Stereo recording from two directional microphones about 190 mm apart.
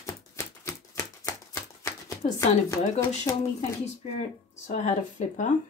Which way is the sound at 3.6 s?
35° left (ahead or behind).